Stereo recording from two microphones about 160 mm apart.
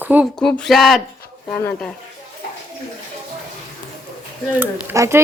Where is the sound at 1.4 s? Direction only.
10° left (ahead or behind).